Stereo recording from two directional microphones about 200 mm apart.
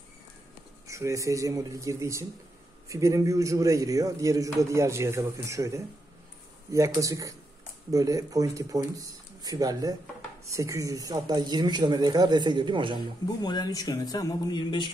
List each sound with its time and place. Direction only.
0.8 s a man's voice: 15° right (ahead or behind)
13.4 s speech: 20° left (ahead or behind)